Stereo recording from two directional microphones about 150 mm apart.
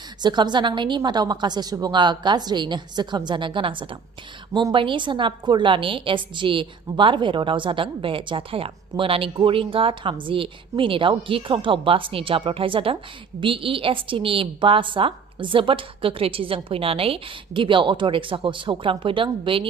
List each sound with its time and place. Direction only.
0.2 s a woman's voice: 30° right (ahead or behind)